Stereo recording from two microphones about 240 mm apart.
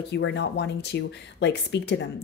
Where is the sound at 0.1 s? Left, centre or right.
Left.